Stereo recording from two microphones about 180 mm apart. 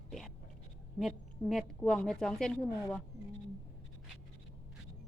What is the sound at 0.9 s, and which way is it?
A woman's voice, centre (ahead or behind).